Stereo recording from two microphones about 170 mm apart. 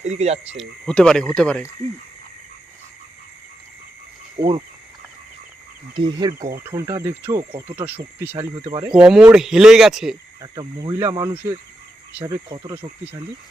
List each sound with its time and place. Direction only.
0.0 s speech: 40° right (ahead or behind)
0.5 s speech: centre (ahead or behind)
4.4 s speech: 25° right (ahead or behind)
5.9 s speech: 25° right (ahead or behind); by 8.4 s 10° right (ahead or behind)
8.5 s speech: 25° right (ahead or behind)
8.9 s speech: 5° right (ahead or behind)
10.4 s speech: 25° right (ahead or behind)